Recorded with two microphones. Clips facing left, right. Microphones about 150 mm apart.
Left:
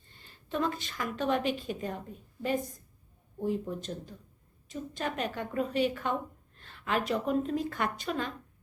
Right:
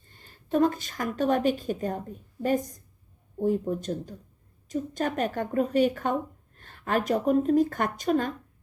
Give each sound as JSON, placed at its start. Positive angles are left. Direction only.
{"t": 0.1, "sound": "a woman's voice", "side_deg": -45}